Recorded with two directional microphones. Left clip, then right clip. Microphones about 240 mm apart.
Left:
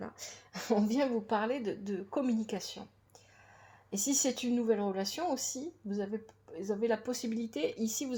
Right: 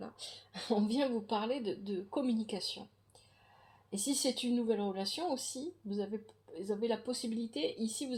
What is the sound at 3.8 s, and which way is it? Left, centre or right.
Speech, left.